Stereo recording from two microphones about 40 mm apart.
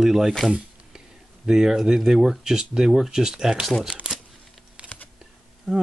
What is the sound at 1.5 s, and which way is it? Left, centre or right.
Speech, centre.